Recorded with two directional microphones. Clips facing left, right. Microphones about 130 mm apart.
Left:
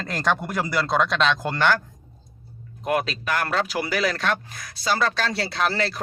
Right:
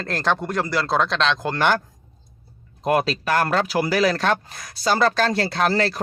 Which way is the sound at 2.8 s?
30° right (ahead or behind).